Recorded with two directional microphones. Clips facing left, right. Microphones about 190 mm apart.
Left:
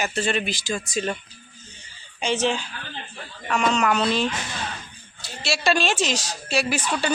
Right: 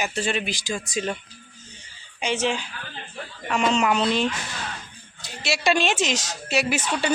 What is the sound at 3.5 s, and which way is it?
A woman's voice, 25° right (ahead or behind).